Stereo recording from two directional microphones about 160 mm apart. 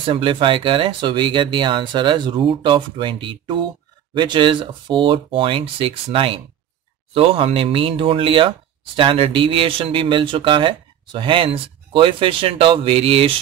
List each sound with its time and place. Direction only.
0.0 s speech: 35° right (ahead or behind)